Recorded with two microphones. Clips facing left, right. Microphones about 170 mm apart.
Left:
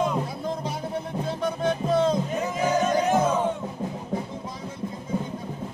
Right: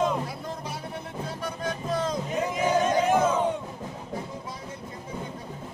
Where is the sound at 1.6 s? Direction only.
25° left (ahead or behind).